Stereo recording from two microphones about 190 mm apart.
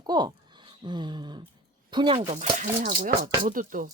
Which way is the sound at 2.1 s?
35° right (ahead or behind).